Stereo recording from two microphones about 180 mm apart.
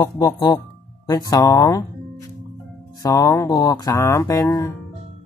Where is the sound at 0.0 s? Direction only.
20° left (ahead or behind).